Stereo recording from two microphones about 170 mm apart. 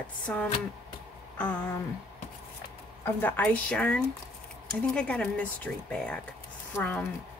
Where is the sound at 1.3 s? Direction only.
10° left (ahead or behind).